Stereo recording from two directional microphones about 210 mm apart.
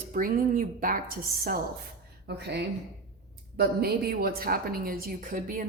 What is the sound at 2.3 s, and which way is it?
A woman's voice, 50° right (ahead or behind).